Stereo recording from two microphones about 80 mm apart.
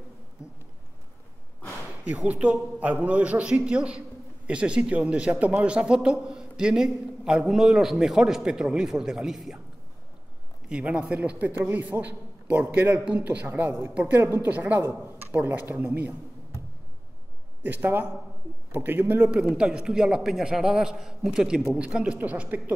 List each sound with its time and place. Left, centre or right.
0.4 s insect: centre
2.0 s a man's voice: centre
10.7 s a man's voice: centre
17.6 s a man's voice: right
19.5 s a man's voice: centre